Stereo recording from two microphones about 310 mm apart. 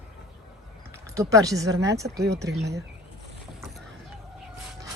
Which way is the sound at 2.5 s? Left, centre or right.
Right.